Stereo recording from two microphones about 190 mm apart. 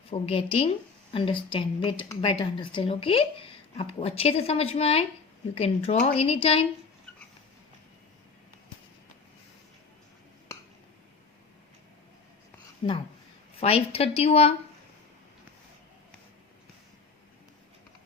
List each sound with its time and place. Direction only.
0.1 s a woman's voice: 30° left (ahead or behind)
12.8 s a woman's voice: 30° left (ahead or behind)